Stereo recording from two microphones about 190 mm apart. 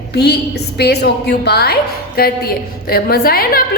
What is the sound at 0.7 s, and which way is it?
A woman's voice, 60° left (ahead or behind).